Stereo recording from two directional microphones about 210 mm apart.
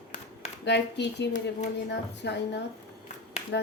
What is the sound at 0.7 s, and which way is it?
A woman's voice, 55° left (ahead or behind).